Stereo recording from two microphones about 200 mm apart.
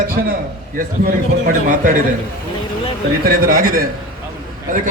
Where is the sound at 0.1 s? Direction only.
45° right (ahead or behind).